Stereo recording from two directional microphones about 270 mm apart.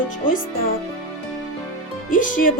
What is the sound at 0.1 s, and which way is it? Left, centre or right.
Speech, left.